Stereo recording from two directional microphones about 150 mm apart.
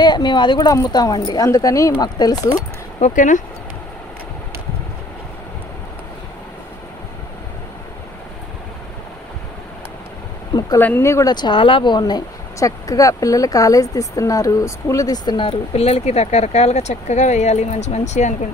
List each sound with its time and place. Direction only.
0.0 s speech: 30° left (ahead or behind)
3.0 s speech: 55° left (ahead or behind)
10.8 s speech: 15° left (ahead or behind); by 18.3 s 50° left (ahead or behind)